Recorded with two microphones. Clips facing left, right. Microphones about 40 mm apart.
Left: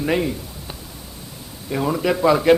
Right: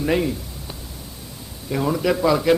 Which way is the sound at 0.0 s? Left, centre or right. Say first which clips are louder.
Even; centre.